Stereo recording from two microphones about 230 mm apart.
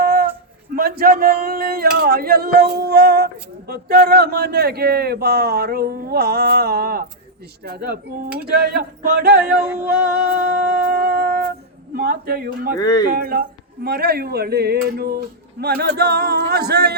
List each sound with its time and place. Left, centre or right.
0.0 s a sound: right
0.8 s speech: right
9.8 s music: right
11.9 s speech: right
12.8 s speech: centre
13.1 s speech: right